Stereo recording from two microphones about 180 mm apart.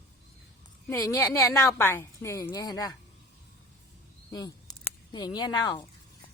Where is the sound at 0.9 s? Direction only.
15° left (ahead or behind).